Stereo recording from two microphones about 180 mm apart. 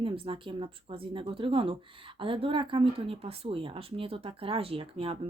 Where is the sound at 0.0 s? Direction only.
30° right (ahead or behind).